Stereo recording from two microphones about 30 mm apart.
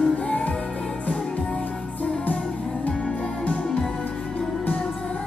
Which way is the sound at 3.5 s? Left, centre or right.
Left.